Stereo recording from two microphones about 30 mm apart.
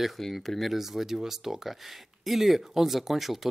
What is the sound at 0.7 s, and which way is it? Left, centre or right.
Speech, centre.